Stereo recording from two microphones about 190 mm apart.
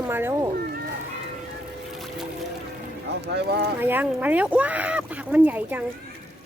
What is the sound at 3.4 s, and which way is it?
Speech, 60° right (ahead or behind).